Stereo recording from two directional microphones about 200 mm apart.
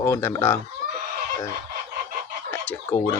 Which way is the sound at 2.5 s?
5° left (ahead or behind).